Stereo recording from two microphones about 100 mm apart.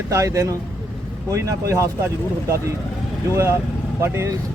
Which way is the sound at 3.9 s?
25° right (ahead or behind).